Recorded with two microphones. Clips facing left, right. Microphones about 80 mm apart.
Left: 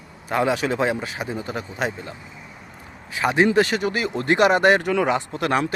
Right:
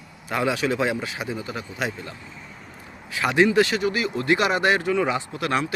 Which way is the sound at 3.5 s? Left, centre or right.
Left.